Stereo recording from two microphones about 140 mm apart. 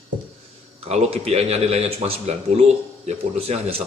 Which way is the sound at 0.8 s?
50° right (ahead or behind).